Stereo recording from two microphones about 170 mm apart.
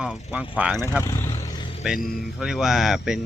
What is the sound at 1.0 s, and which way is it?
Vehicle, 15° left (ahead or behind).